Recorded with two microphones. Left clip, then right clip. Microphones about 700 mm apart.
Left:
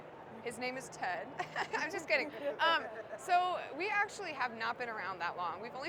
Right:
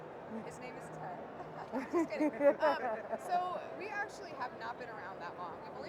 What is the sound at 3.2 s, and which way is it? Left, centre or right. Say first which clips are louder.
Speech: left 6 dB; left.